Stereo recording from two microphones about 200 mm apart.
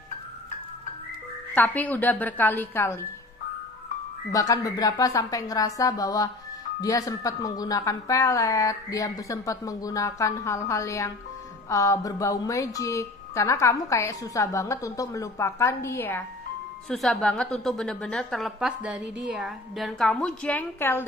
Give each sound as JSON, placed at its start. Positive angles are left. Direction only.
{"t": 1.5, "sound": "a woman's voice", "side_deg": 10}
{"t": 4.3, "sound": "a woman's voice", "side_deg": 15}